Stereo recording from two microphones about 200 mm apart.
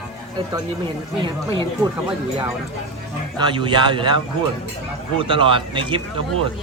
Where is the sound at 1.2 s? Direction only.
25° right (ahead or behind).